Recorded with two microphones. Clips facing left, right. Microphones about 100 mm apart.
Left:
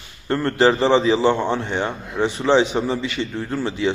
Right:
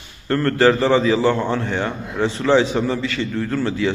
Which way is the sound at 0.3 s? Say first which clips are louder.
Right 1 dB; 20° left (ahead or behind).